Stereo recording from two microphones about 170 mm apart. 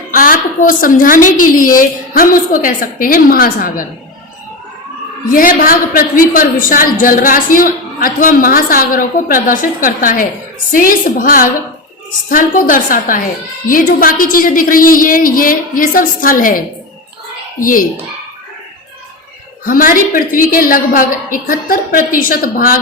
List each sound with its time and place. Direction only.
0.1 s a woman's voice: 55° left (ahead or behind)
5.3 s a man's voice: 55° left (ahead or behind)
19.6 s a man's voice: 55° left (ahead or behind)